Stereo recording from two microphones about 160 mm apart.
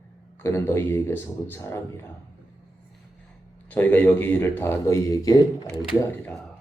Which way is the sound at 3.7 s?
10° left (ahead or behind).